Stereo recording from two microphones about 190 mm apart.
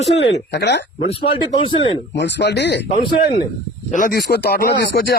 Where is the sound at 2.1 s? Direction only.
65° left (ahead or behind).